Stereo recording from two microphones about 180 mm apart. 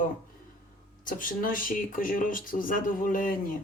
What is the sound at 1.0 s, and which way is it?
Speech, 50° left (ahead or behind).